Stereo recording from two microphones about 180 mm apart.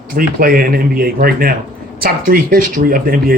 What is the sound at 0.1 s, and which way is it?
Speech, 55° right (ahead or behind).